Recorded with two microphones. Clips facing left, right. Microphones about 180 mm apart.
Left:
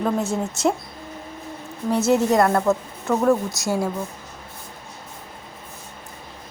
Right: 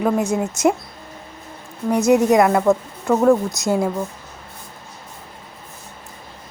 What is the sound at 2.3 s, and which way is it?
Speech, 5° right (ahead or behind).